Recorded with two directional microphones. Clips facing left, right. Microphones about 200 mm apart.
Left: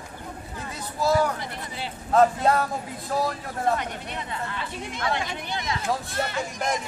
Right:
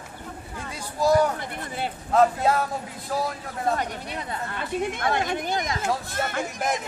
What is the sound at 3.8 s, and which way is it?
Speech, 35° right (ahead or behind).